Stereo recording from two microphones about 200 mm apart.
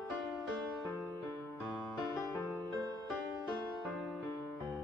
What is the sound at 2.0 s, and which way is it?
Music, 20° left (ahead or behind).